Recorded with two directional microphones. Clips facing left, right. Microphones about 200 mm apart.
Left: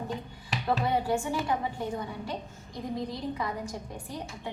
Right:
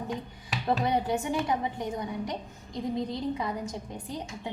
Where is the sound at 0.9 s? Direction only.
20° right (ahead or behind).